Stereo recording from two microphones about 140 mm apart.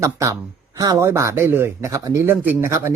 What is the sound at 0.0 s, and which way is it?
A man's voice, 20° right (ahead or behind).